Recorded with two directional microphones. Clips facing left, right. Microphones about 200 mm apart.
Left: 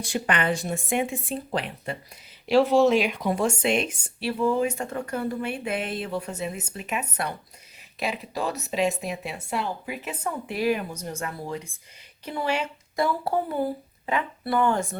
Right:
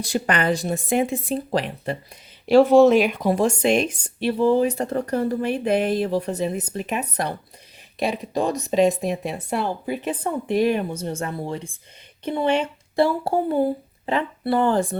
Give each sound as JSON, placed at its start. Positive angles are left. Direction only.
{"t": 0.0, "sound": "speech", "side_deg": -40}
{"t": 2.5, "sound": "speech", "side_deg": -50}
{"t": 3.2, "sound": "speech", "side_deg": -35}
{"t": 8.8, "sound": "speech", "side_deg": -35}